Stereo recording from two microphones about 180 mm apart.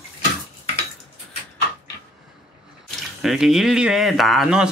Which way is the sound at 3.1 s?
Centre (ahead or behind).